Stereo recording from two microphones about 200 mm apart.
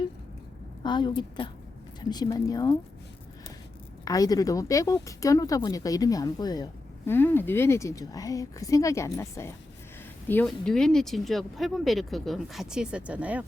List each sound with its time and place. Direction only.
0.8 s speech: 25° left (ahead or behind)
4.0 s speech: 15° left (ahead or behind); by 13.4 s 5° right (ahead or behind)